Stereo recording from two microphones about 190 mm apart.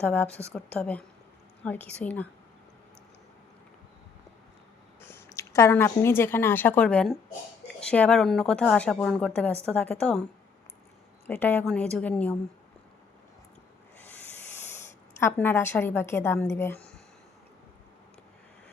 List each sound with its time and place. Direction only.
0.0 s a woman's voice: 5° left (ahead or behind)
4.9 s a woman's voice: 10° left (ahead or behind)
11.3 s a woman's voice: 10° left (ahead or behind)
15.2 s a woman's voice: 10° left (ahead or behind)